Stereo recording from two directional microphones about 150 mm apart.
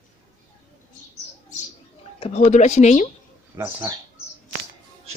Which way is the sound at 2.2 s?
50° left (ahead or behind).